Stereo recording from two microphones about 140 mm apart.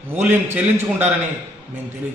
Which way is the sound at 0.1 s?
15° right (ahead or behind).